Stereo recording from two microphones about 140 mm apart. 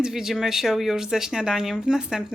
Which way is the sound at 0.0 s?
5° right (ahead or behind).